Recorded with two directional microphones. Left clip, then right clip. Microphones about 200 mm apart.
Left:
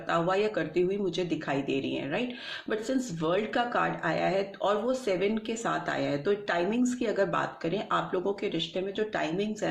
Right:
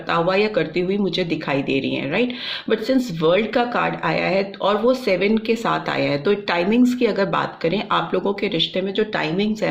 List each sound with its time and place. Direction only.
0.1 s speech: 35° right (ahead or behind)